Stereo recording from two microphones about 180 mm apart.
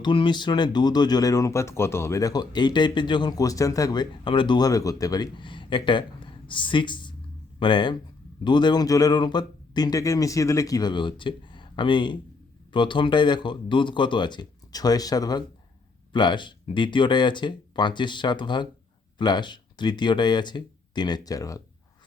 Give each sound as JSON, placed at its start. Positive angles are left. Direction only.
{"t": 0.0, "sound": "speech", "side_deg": 25}